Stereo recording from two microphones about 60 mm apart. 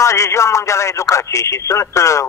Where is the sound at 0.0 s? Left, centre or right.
Left.